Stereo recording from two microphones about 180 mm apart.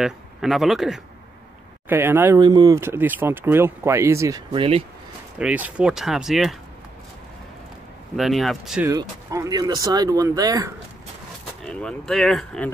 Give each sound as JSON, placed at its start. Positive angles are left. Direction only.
{"t": 0.0, "sound": "speech", "side_deg": 0}
{"t": 1.9, "sound": "speech", "side_deg": -15}
{"t": 5.4, "sound": "speech", "side_deg": -5}
{"t": 8.2, "sound": "speech", "side_deg": 0}
{"t": 8.8, "sound": "speech", "side_deg": -15}
{"t": 11.6, "sound": "speech", "side_deg": 5}